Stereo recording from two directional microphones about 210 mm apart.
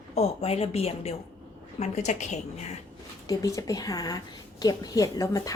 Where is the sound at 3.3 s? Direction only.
15° left (ahead or behind).